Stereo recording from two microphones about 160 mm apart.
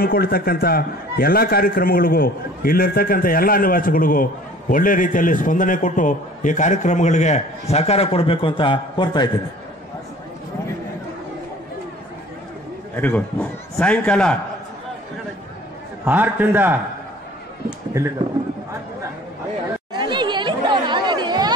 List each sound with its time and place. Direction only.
0.0 s a man's voice: 70° left (ahead or behind); by 9.3 s 30° left (ahead or behind)
12.9 s a man's voice: 10° left (ahead or behind)
16.1 s a man's voice: 10° right (ahead or behind)
17.9 s speech: 20° right (ahead or behind)
20.0 s chatter: 30° right (ahead or behind)